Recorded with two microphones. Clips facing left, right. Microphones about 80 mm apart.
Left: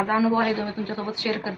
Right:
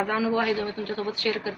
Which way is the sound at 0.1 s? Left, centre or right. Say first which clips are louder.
Left 3 dB; left.